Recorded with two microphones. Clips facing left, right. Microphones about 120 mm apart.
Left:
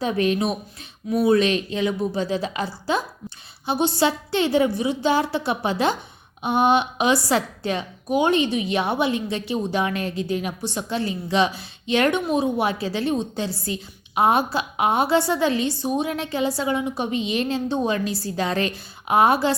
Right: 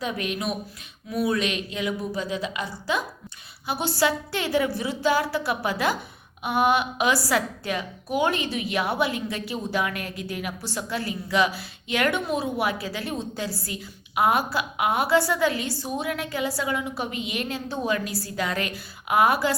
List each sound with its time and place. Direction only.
0.0 s a woman's voice: 30° left (ahead or behind)